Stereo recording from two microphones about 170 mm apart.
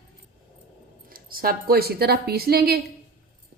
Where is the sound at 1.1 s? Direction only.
60° right (ahead or behind).